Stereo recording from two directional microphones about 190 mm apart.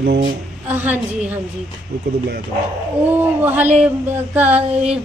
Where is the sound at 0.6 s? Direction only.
10° right (ahead or behind).